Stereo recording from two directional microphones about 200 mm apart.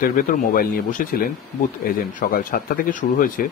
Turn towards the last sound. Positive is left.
turn(degrees=40)  # may be behind; listen again after turning